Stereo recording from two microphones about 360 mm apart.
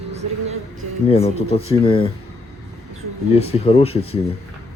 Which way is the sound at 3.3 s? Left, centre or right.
Centre.